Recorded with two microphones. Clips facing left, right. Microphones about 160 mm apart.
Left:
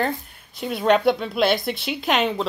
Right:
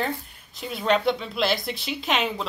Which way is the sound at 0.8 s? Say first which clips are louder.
Left 4 dB; 55° left (ahead or behind).